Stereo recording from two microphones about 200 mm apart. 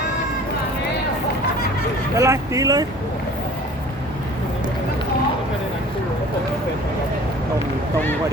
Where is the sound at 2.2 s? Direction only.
15° right (ahead or behind).